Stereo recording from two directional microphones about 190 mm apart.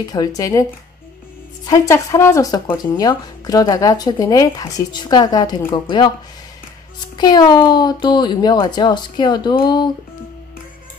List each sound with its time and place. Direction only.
0.1 s speech: 20° left (ahead or behind)
1.7 s speech: 15° left (ahead or behind)
7.2 s speech: 20° left (ahead or behind)